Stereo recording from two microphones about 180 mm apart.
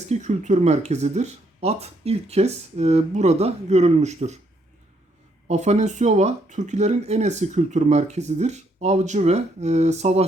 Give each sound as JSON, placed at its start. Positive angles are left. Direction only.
{"t": 0.1, "sound": "speech", "side_deg": -40}
{"t": 5.5, "sound": "speech", "side_deg": -40}